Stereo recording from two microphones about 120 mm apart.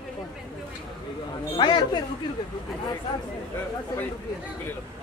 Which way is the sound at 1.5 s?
40° left (ahead or behind).